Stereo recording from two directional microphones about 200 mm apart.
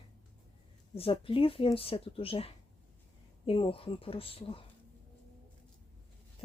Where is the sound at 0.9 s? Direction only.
25° left (ahead or behind).